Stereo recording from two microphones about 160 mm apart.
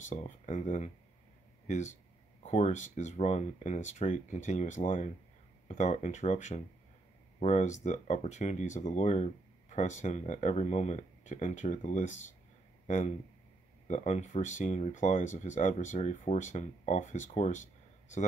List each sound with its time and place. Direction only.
0.0 s speech: 50° left (ahead or behind)